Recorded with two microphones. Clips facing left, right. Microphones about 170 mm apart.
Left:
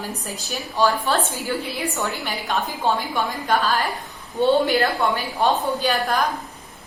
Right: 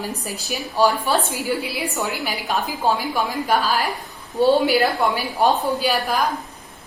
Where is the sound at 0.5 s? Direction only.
15° right (ahead or behind).